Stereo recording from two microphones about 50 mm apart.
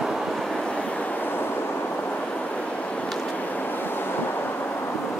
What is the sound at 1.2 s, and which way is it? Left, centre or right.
Vehicle, left.